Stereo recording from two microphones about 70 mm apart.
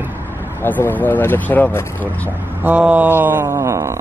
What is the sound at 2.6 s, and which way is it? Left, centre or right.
Speech, centre.